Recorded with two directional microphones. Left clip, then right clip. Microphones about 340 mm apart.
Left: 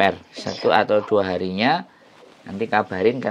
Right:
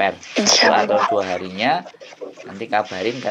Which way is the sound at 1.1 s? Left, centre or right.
Left.